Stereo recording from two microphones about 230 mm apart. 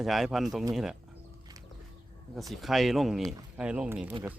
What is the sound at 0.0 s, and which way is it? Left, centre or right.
Speech, centre.